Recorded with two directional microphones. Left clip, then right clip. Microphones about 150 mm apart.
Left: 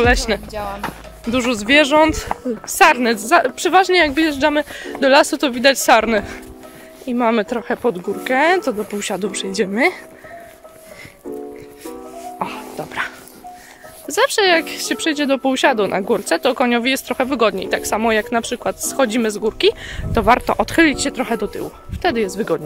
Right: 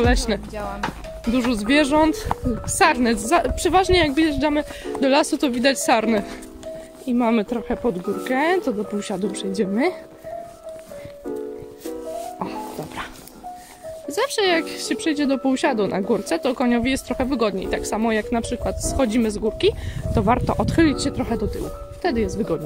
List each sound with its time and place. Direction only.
0.0 s a woman's voice: 10° right (ahead or behind)
0.5 s speech: 80° left
0.8 s a woman's voice: centre (ahead or behind)
12.4 s music: 5° right (ahead or behind)
14.0 s speech: centre (ahead or behind)